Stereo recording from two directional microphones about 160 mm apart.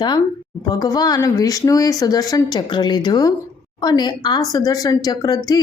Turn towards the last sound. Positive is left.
turn(degrees=25)  # may be behind; listen again after turning